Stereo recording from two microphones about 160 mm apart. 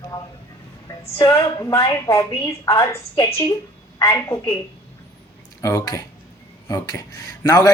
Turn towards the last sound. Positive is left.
turn(degrees=25)  # may be behind; listen again after turning